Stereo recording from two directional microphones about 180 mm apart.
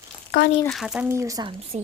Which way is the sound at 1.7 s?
40° right (ahead or behind).